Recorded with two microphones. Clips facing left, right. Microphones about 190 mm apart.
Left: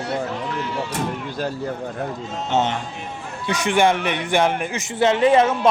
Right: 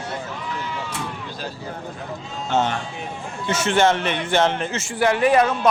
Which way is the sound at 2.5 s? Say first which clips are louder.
Even; 20° left (ahead or behind).